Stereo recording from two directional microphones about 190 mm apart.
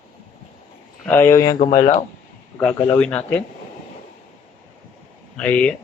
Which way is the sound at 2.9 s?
5° left (ahead or behind).